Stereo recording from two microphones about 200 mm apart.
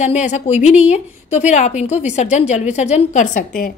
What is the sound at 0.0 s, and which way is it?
A woman's voice, 35° left (ahead or behind).